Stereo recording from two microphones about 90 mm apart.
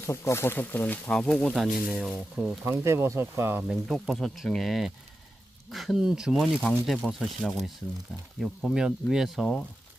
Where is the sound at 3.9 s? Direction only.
Centre (ahead or behind).